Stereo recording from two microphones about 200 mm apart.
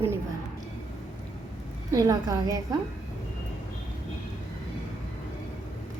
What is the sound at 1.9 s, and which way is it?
Speech, 15° right (ahead or behind).